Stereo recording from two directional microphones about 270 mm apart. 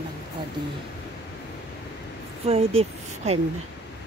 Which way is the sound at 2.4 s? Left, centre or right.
Right.